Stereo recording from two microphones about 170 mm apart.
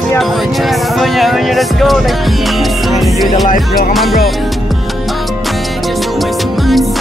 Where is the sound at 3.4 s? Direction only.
50° left (ahead or behind).